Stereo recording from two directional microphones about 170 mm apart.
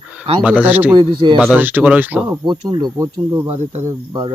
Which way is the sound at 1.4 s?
10° right (ahead or behind).